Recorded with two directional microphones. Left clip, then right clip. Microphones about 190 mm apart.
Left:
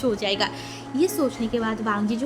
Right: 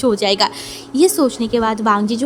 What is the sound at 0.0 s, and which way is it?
A woman's voice, 45° right (ahead or behind).